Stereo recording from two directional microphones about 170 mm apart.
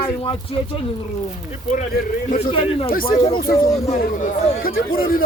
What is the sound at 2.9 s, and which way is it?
Speech, 60° left (ahead or behind).